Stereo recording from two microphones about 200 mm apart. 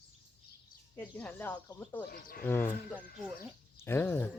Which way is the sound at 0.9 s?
5° left (ahead or behind).